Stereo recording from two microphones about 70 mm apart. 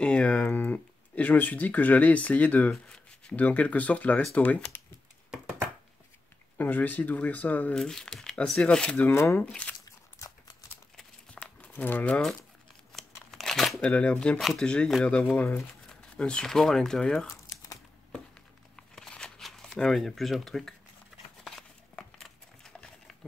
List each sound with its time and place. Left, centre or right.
0.0 s speech: centre
6.6 s speech: left
7.7 s speech: centre
9.1 s speech: left
9.4 s speech: centre
11.3 s crumpling: left
12.9 s crumpling: centre
13.7 s speech: centre
15.3 s speech: left
15.9 s speech: centre
17.3 s crumpling: left
18.8 s a sound: centre
19.8 s speech: centre
21.5 s a sound: centre